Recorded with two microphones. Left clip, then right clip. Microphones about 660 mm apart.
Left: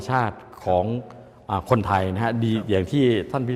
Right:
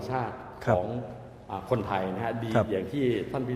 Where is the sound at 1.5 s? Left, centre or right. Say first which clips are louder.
Left 8 dB; left.